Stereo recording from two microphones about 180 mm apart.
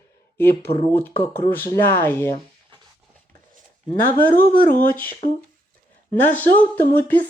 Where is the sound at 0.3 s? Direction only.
10° left (ahead or behind).